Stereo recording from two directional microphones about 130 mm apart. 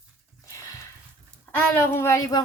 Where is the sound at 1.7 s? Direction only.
15° left (ahead or behind).